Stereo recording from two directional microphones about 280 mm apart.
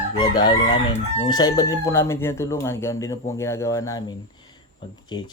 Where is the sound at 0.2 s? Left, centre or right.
Centre.